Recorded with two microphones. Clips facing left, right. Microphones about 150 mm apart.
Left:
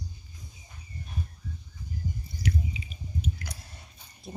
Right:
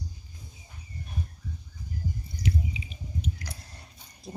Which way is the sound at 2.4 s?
25° right (ahead or behind).